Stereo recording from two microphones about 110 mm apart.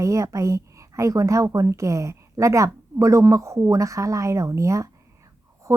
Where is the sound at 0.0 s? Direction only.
30° right (ahead or behind).